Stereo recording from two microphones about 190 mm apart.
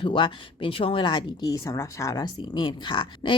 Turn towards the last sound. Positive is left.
turn(degrees=25)  # may be behind; listen again after turning